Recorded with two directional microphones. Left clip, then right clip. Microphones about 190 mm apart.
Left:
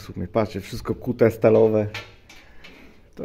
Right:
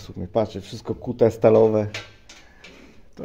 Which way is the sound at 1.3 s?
Centre (ahead or behind).